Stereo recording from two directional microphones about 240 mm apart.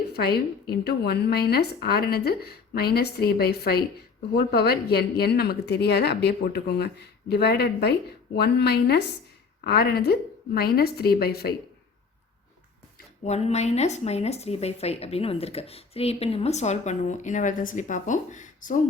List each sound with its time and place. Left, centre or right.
0.1 s a woman's voice: left
13.2 s speech: left